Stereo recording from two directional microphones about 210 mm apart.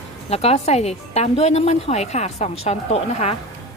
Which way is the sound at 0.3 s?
30° left (ahead or behind).